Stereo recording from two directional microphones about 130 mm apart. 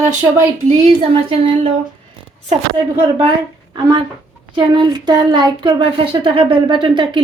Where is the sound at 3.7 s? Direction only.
35° right (ahead or behind).